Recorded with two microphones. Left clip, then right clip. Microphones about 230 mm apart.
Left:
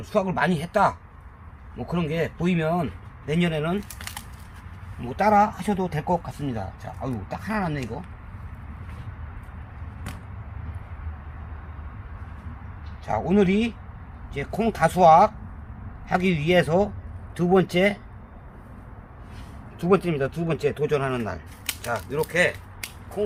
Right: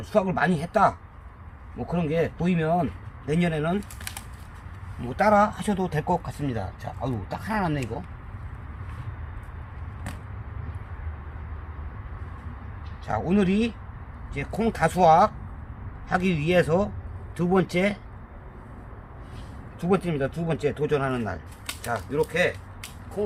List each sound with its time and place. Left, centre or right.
0.0 s speech: centre
5.0 s speech: centre
13.1 s speech: centre
19.8 s speech: centre